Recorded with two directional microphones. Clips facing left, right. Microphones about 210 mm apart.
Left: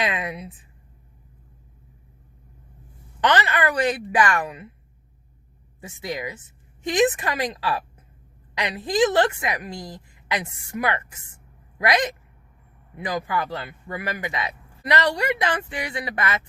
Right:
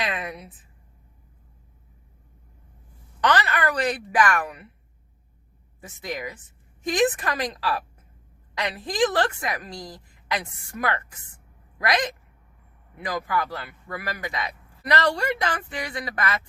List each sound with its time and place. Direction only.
0.2 s a woman's voice: 20° left (ahead or behind)
3.2 s a woman's voice: 20° left (ahead or behind)
6.1 s a woman's voice: 25° left (ahead or behind)
13.1 s a woman's voice: 20° left (ahead or behind)